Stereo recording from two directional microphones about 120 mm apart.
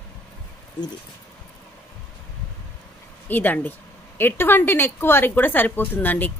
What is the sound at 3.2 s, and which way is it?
Speech, 15° left (ahead or behind).